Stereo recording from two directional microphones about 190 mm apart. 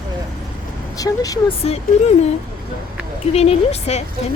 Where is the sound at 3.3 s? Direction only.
35° left (ahead or behind).